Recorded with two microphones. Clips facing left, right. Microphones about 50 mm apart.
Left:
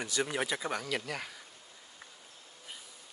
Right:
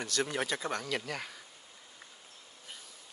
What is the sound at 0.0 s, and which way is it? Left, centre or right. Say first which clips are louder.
Speech: even; centre.